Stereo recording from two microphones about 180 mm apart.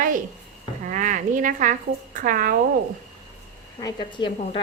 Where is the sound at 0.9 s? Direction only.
45° right (ahead or behind).